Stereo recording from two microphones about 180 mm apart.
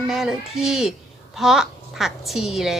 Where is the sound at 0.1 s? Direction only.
Centre (ahead or behind).